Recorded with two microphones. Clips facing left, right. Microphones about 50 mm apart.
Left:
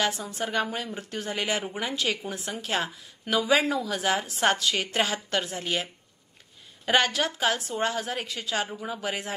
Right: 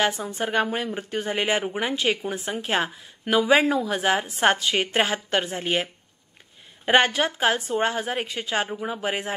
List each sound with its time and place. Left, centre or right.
0.0 s a woman's voice: right
6.9 s a woman's voice: right